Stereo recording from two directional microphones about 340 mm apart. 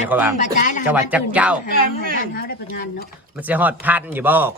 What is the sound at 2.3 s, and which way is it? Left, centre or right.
Speech, left.